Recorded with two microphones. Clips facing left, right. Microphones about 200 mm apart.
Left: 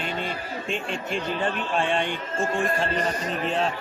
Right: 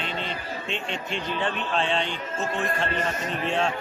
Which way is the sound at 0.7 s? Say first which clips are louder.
Left 3 dB; 5° left (ahead or behind).